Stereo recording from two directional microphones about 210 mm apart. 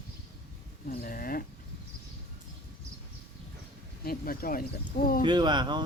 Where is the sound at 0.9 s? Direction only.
45° left (ahead or behind).